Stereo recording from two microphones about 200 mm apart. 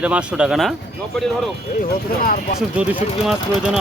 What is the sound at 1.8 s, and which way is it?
Speech, 45° left (ahead or behind).